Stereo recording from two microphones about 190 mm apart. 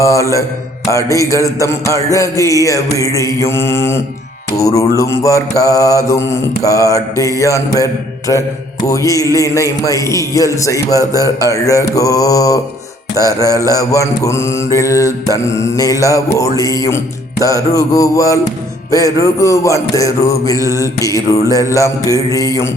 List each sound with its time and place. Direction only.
0.0 s mantra: 15° left (ahead or behind)